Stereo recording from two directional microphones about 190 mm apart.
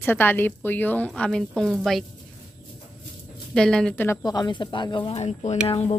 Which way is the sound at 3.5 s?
5° left (ahead or behind).